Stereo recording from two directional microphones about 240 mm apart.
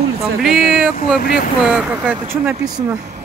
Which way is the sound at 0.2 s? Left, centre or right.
Centre.